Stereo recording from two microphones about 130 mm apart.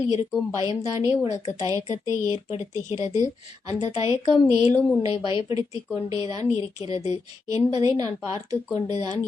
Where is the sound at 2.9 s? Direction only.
60° left (ahead or behind).